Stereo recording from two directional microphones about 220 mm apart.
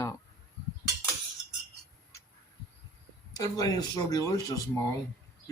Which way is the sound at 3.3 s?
15° left (ahead or behind).